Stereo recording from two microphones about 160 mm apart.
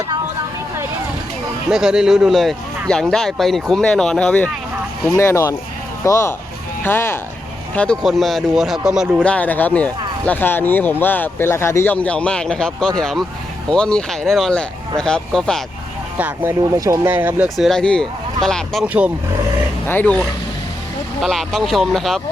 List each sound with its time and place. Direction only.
1.7 s speech: 5° right (ahead or behind)
5.0 s speech: 20° left (ahead or behind)
7.8 s speech: 5° left (ahead or behind)
9.2 s speech: 10° left (ahead or behind)
16.1 s speech: 10° right (ahead or behind)
17.6 s speech: 5° left (ahead or behind)
19.9 s speech: 10° left (ahead or behind)